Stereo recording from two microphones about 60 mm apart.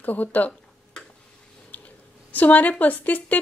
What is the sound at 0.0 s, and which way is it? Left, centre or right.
Speech, left.